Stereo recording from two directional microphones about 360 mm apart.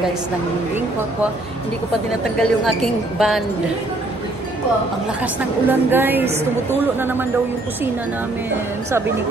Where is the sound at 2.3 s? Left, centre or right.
Centre.